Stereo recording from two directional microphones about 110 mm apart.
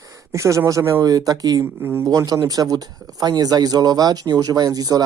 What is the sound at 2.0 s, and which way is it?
A man's voice, 35° right (ahead or behind).